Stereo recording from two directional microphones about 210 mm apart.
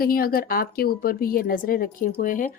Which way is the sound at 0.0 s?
45° left (ahead or behind).